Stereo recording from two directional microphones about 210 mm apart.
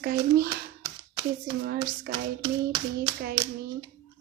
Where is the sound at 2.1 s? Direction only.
50° right (ahead or behind).